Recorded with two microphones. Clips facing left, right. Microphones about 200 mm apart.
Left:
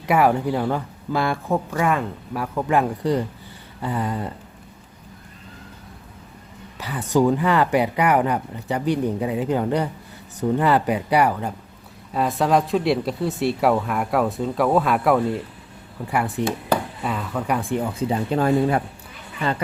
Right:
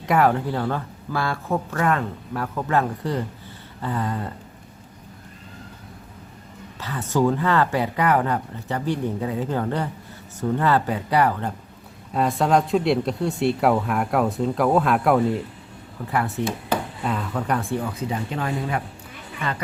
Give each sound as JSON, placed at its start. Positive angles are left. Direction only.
{"t": 0.0, "sound": "speech", "side_deg": 10}
{"t": 6.7, "sound": "speech", "side_deg": 15}
{"t": 16.4, "sound": "speech", "side_deg": 15}
{"t": 17.0, "sound": "speech", "side_deg": 0}
{"t": 18.1, "sound": "speech", "side_deg": 35}